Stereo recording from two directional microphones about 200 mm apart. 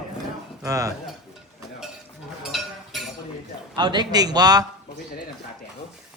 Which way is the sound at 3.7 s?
20° right (ahead or behind).